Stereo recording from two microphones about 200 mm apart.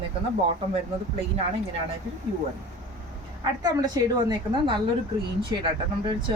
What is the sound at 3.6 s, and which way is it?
A woman's voice, 20° right (ahead or behind).